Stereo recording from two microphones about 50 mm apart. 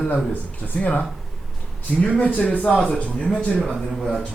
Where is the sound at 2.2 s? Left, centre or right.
Left.